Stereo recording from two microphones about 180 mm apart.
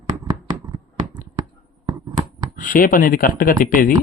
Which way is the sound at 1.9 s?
20° right (ahead or behind).